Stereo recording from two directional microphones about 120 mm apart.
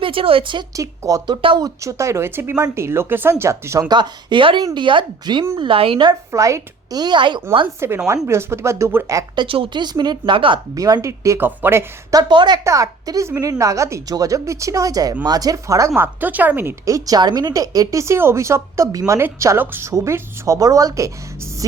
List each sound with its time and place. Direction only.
0.0 s speech: 45° right (ahead or behind)
0.8 s speech: 30° right (ahead or behind)
1.4 s speech: 45° right (ahead or behind)
1.6 s a woman's voice: 25° right (ahead or behind); by 6.1 s 50° right (ahead or behind)
6.1 s a woman's voice: 25° right (ahead or behind)
7.8 s speech: 20° right (ahead or behind)
9.3 s a woman's voice: 45° right (ahead or behind)
10.8 s speech: 30° right (ahead or behind)
12.1 s a woman's voice: 40° right (ahead or behind)
12.6 s speech: 25° right (ahead or behind)
16.0 s speech: 15° right (ahead or behind)
16.8 s speech: 30° right (ahead or behind)